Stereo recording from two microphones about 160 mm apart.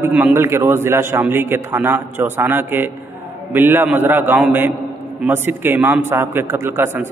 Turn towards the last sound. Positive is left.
turn(degrees=-15)  # may be behind; listen again after turning